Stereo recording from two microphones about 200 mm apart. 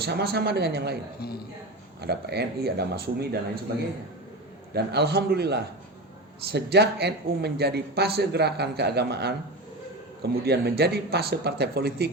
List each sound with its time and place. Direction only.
0.0 s speech: 55° right (ahead or behind)
2.0 s speech: 55° right (ahead or behind)
4.7 s a man's voice: 55° right (ahead or behind)